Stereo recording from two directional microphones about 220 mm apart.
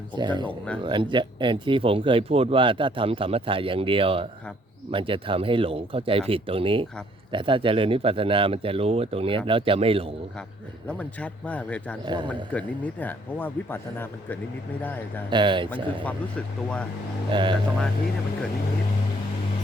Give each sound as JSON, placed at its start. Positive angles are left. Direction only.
{"t": 0.2, "sound": "speech", "side_deg": -20}
{"t": 0.4, "sound": "speech", "side_deg": 5}
{"t": 0.8, "sound": "speech", "side_deg": -20}
{"t": 10.8, "sound": "speech", "side_deg": 5}
{"t": 12.0, "sound": "speech", "side_deg": -20}
{"t": 12.3, "sound": "speech", "side_deg": 5}
{"t": 15.3, "sound": "speech", "side_deg": -20}
{"t": 15.7, "sound": "speech", "side_deg": 5}
{"t": 17.3, "sound": "speech", "side_deg": -20}